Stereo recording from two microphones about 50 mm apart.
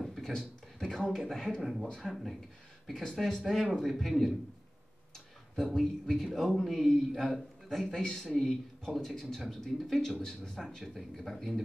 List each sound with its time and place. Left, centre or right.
0.0 s a sound: centre
1.1 s a man's voice: centre
1.6 s a man's voice: centre
5.6 s a man's voice: centre
7.8 s a man's voice: centre
10.8 s a man's voice: centre